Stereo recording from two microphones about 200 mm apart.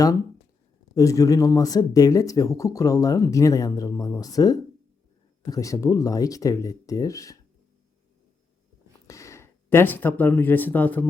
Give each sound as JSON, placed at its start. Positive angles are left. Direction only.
{"t": 0.9, "sound": "speech", "side_deg": 15}
{"t": 9.0, "sound": "speech", "side_deg": 15}